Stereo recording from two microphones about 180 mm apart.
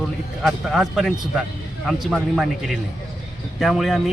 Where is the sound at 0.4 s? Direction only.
5° right (ahead or behind).